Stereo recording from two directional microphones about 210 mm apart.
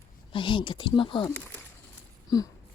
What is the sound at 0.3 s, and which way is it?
Speech, 25° left (ahead or behind).